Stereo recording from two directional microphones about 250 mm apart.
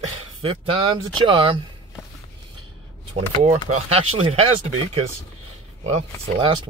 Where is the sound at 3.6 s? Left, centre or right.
Right.